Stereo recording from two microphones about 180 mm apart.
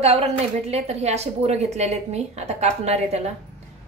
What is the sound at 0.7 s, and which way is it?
A woman's voice, 35° right (ahead or behind).